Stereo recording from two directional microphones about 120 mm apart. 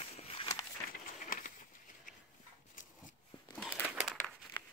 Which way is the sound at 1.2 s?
90° left.